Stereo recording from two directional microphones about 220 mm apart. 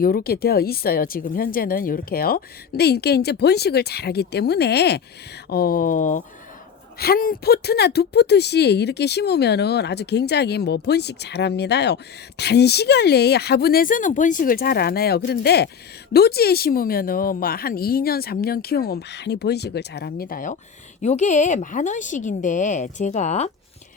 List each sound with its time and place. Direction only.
0.0 s a woman's voice: 45° left (ahead or behind)